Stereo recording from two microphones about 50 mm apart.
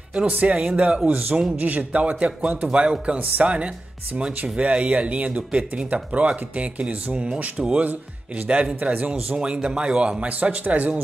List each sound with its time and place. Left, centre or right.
0.1 s a man's voice: right
9.4 s speech: centre
10.2 s speech: right